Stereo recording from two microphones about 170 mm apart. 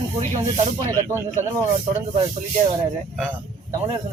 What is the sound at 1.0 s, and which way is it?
Speech, 20° right (ahead or behind).